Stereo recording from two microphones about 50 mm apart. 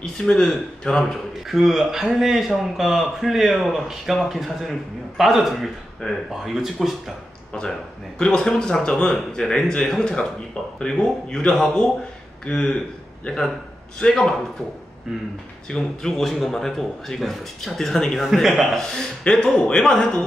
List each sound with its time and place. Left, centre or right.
0.0 s speech: centre
1.5 s a man's voice: centre
6.4 s a man's voice: centre
7.5 s speech: left
13.9 s speech: centre
15.7 s a man's voice: centre
18.8 s speech: centre